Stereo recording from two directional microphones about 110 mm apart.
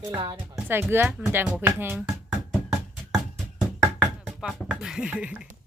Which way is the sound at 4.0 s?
Centre (ahead or behind).